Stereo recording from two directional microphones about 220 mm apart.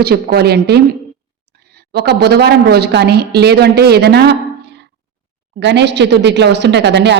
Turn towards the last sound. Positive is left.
turn(degrees=-50)  # may be behind; listen again after turning